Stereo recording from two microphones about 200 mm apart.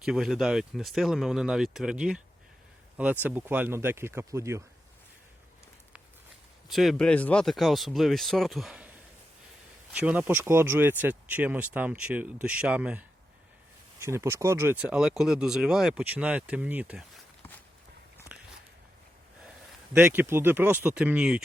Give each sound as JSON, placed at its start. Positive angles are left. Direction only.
{"t": 0.0, "sound": "speech", "side_deg": 0}
{"t": 6.7, "sound": "speech", "side_deg": 0}
{"t": 9.9, "sound": "speech", "side_deg": -5}
{"t": 14.0, "sound": "speech", "side_deg": -15}
{"t": 19.9, "sound": "speech", "side_deg": -10}